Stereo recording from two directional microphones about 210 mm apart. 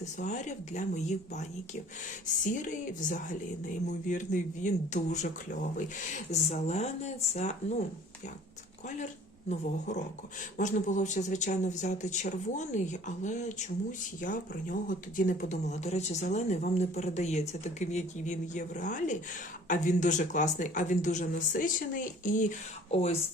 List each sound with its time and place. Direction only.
0.0 s speech: 35° left (ahead or behind)
9.5 s speech: 35° left (ahead or behind)